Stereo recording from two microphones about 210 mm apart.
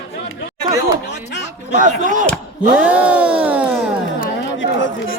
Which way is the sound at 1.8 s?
40° right (ahead or behind).